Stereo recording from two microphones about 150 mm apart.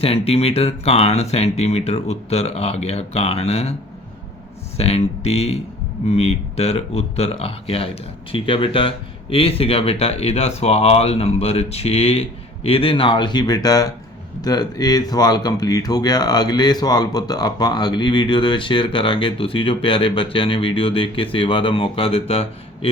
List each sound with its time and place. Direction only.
0.0 s speech: 40° left (ahead or behind)
4.8 s speech: 45° left (ahead or behind)